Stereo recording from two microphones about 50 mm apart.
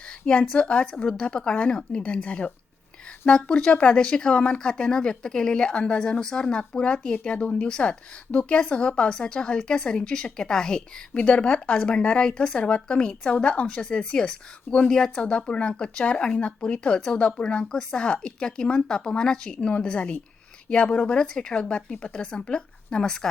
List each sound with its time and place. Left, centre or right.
0.1 s a woman's voice: left
11.1 s a woman's voice: left